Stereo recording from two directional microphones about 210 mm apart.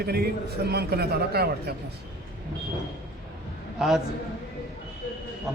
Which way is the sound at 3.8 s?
Centre (ahead or behind).